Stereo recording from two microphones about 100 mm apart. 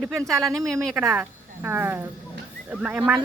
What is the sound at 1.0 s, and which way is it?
Speech, 20° right (ahead or behind).